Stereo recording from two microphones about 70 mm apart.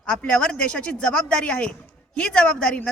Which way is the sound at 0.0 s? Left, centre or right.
Centre.